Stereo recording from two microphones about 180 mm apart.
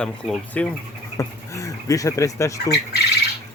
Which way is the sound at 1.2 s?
15° left (ahead or behind).